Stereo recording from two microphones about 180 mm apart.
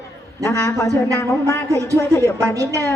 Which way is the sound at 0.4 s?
15° left (ahead or behind).